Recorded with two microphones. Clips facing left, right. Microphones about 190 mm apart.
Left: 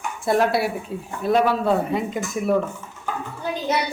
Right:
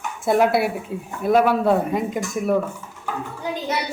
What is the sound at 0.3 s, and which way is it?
Speech, 15° right (ahead or behind).